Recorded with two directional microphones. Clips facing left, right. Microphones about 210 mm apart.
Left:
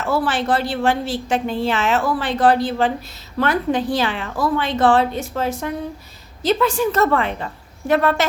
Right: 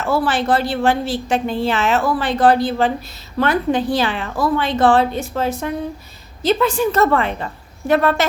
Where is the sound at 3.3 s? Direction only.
25° right (ahead or behind).